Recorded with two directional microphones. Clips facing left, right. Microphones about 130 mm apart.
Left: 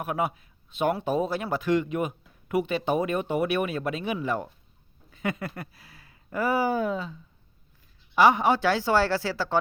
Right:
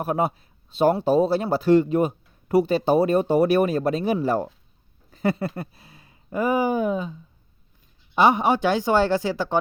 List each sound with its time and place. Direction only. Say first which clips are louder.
0.0 s speech: right 5 dB; 30° right (ahead or behind)